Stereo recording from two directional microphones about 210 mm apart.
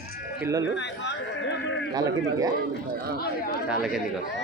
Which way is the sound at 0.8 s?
55° left (ahead or behind).